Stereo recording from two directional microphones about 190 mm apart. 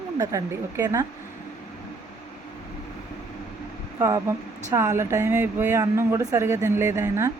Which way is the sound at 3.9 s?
20° right (ahead or behind).